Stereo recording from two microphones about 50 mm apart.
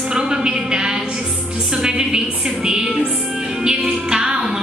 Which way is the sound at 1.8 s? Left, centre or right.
Centre.